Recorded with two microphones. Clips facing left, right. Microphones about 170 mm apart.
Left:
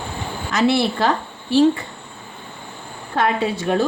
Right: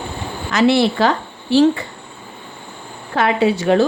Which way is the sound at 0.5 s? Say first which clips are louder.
Right 4 dB; 90° right.